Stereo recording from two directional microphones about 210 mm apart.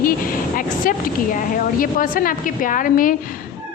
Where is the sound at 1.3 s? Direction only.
40° left (ahead or behind).